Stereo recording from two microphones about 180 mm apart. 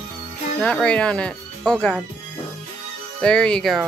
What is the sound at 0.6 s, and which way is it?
Speech, 5° left (ahead or behind).